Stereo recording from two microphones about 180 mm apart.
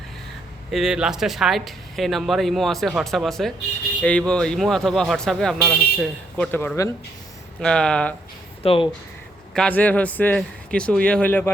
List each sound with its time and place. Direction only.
0.7 s speech: 5° right (ahead or behind); by 6.9 s 15° left (ahead or behind)
7.6 s speech: 5° left (ahead or behind)
8.6 s speech: 30° left (ahead or behind)
9.6 s speech: 10° left (ahead or behind)